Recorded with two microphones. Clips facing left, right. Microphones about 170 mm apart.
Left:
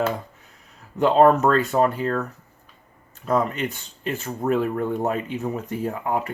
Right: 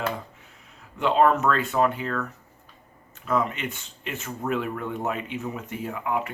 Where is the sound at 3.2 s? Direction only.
40° left (ahead or behind).